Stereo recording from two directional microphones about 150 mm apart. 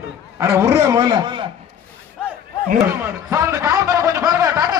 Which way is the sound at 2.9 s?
15° right (ahead or behind).